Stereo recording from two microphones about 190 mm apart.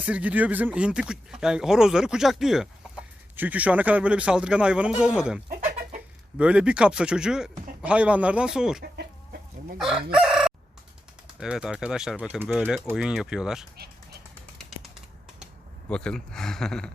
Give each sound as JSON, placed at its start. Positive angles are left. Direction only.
{"t": 0.0, "sound": "speech", "side_deg": -5}
{"t": 5.5, "sound": "chicken", "side_deg": -45}
{"t": 6.3, "sound": "speech", "side_deg": -5}
{"t": 8.8, "sound": "chicken", "side_deg": -55}
{"t": 9.7, "sound": "crowing", "side_deg": -5}
{"t": 11.3, "sound": "speech", "side_deg": -5}
{"t": 13.7, "sound": "bird", "side_deg": -55}
{"t": 15.9, "sound": "speech", "side_deg": 5}